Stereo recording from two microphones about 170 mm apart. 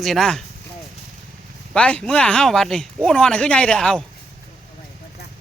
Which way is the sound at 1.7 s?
5° left (ahead or behind).